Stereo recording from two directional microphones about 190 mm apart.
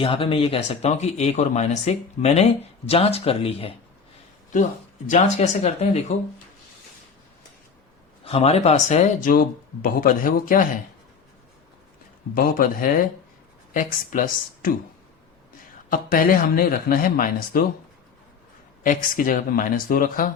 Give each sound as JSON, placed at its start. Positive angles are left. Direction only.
{"t": 0.0, "sound": "speech", "side_deg": 30}
{"t": 5.0, "sound": "speech", "side_deg": 35}
{"t": 8.2, "sound": "speech", "side_deg": 30}
{"t": 9.3, "sound": "speech", "side_deg": 50}
{"t": 12.3, "sound": "speech", "side_deg": 50}
{"t": 15.9, "sound": "speech", "side_deg": 50}
{"t": 18.8, "sound": "speech", "side_deg": 45}